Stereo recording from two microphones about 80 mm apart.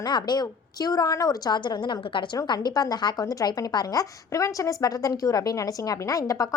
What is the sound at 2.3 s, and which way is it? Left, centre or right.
Speech, left.